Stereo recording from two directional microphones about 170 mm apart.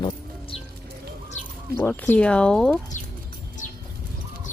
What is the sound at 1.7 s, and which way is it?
Speech, 10° left (ahead or behind).